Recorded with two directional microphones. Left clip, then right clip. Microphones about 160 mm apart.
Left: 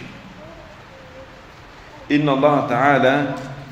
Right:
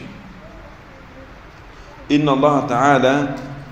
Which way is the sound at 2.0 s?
10° right (ahead or behind).